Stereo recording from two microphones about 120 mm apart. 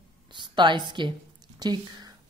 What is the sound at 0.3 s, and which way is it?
A woman's voice, 40° right (ahead or behind).